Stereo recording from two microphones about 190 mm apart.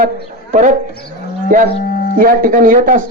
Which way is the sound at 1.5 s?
45° right (ahead or behind).